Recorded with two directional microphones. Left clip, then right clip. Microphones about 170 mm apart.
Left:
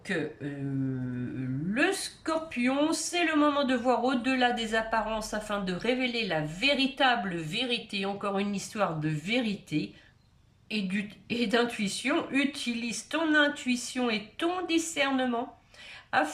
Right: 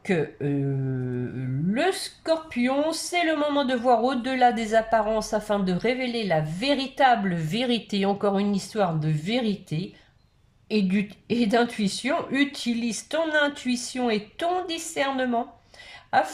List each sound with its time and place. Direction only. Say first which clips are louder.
0.1 s a woman's voice: right 6 dB; 35° right (ahead or behind)
1.7 s a woman's voice: right 3 dB; 30° right (ahead or behind)